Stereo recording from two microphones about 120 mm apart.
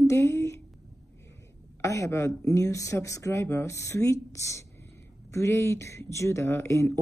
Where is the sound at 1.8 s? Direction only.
25° left (ahead or behind).